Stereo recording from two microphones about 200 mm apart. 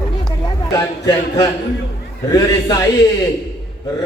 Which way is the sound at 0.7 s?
20° left (ahead or behind).